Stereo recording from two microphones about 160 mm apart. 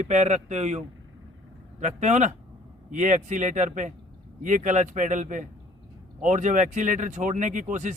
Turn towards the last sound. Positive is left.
turn(degrees=-50)  # may be behind; listen again after turning